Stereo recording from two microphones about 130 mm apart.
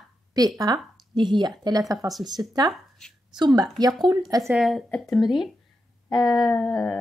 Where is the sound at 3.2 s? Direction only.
35° right (ahead or behind).